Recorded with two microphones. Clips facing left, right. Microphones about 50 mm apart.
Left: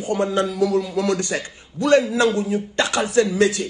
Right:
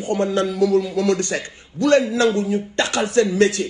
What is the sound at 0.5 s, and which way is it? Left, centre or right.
Speech, left.